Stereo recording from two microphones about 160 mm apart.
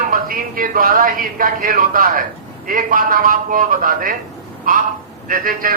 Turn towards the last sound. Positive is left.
turn(degrees=-60)  # may be behind; listen again after turning